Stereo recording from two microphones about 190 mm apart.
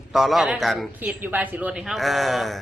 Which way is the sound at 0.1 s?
Centre (ahead or behind).